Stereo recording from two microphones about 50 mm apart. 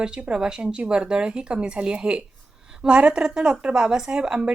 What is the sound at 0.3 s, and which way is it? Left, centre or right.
Speech, centre.